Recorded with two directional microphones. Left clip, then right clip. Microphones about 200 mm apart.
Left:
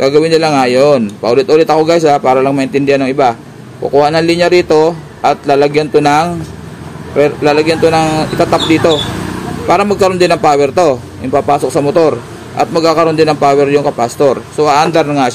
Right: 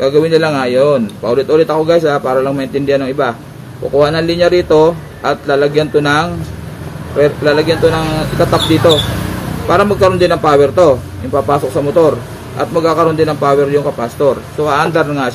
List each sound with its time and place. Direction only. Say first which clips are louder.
0.0 s a man's voice: left 2 dB; 45° left (ahead or behind)
9.7 s a man's voice: even; 40° left (ahead or behind)